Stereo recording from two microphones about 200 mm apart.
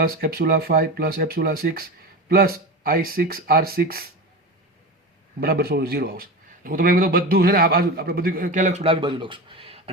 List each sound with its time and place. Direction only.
0.0 s a man's voice: 50° right (ahead or behind)
5.4 s a man's voice: 50° right (ahead or behind); by 9.9 s 30° right (ahead or behind)